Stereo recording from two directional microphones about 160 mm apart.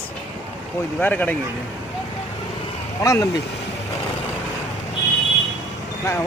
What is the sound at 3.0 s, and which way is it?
Speech, 20° left (ahead or behind).